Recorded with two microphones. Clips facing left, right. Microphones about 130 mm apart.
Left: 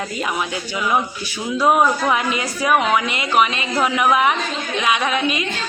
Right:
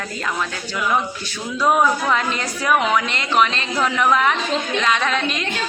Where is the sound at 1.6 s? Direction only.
10° left (ahead or behind).